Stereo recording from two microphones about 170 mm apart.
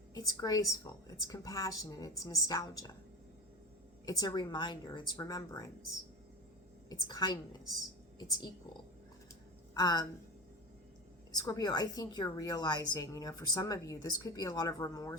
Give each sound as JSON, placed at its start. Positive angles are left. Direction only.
{"t": 0.1, "sound": "a woman's voice", "side_deg": 20}
{"t": 4.0, "sound": "a woman's voice", "side_deg": 20}
{"t": 7.1, "sound": "a woman's voice", "side_deg": 25}
{"t": 9.7, "sound": "a woman's voice", "side_deg": 25}
{"t": 11.3, "sound": "a woman's voice", "side_deg": 20}